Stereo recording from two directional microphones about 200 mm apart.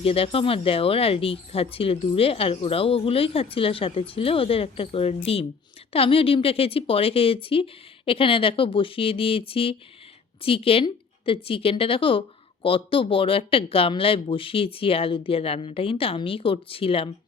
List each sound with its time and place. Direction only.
0.0 s speech: 30° left (ahead or behind)